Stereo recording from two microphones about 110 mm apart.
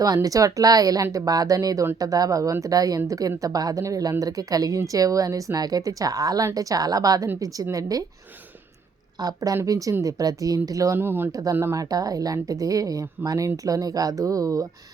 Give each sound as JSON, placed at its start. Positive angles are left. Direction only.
{"t": 0.0, "sound": "speech", "side_deg": -35}
{"t": 9.1, "sound": "speech", "side_deg": -35}
{"t": 11.3, "sound": "speech", "side_deg": -30}